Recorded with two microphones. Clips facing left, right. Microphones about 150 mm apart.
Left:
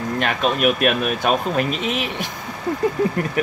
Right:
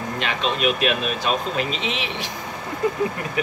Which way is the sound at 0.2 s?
50° left (ahead or behind).